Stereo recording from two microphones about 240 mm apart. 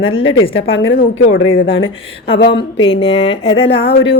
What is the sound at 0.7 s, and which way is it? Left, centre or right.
Speech, left.